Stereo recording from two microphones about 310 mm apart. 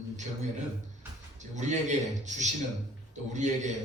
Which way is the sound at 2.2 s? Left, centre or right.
Right.